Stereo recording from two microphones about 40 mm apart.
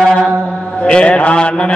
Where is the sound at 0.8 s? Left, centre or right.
Left.